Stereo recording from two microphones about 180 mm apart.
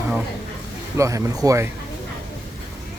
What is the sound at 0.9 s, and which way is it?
Speech, 15° right (ahead or behind).